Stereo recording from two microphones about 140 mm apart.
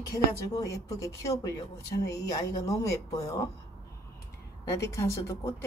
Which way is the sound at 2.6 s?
20° left (ahead or behind).